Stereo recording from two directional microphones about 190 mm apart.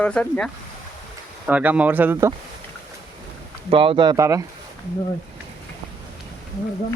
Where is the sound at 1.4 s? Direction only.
10° right (ahead or behind).